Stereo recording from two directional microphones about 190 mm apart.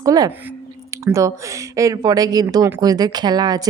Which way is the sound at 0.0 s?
20° right (ahead or behind).